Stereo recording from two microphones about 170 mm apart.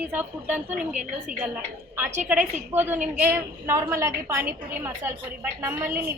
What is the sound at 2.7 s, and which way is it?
A woman's voice, 10° right (ahead or behind).